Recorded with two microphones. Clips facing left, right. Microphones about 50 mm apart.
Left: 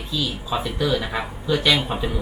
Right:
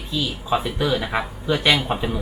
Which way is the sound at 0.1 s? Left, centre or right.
Right.